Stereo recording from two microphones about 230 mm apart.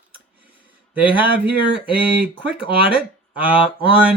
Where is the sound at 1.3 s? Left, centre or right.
Right.